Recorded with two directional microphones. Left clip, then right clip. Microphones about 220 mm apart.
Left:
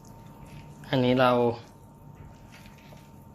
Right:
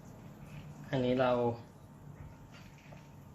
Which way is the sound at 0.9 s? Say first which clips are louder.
Left 8 dB; 45° left (ahead or behind).